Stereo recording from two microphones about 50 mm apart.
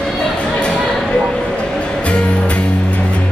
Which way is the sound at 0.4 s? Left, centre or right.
Centre.